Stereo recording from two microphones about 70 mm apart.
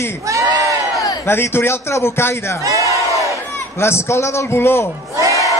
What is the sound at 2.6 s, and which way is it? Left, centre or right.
Speech, right.